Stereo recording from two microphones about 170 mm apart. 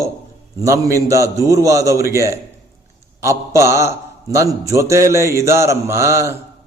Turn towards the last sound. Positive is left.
turn(degrees=-15)  # may be behind; listen again after turning